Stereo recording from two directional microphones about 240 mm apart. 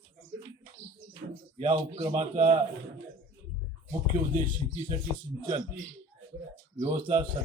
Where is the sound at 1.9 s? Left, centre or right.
Right.